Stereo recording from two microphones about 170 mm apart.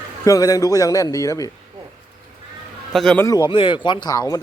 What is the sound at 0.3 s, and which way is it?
A man's voice, 20° left (ahead or behind).